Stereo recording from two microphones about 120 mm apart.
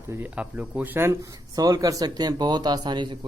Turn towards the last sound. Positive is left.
turn(degrees=-40)  # may be behind; listen again after turning